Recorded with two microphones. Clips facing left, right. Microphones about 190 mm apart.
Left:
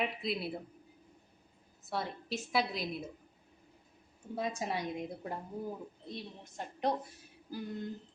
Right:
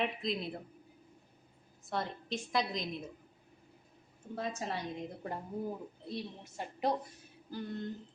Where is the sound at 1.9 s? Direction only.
5° left (ahead or behind).